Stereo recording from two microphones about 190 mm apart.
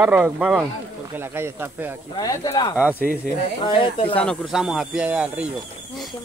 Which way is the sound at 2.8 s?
10° right (ahead or behind).